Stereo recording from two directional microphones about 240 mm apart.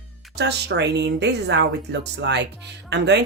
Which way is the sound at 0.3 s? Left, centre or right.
Right.